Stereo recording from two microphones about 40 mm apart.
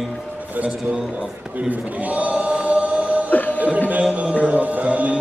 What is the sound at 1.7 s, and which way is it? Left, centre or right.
Choir, right.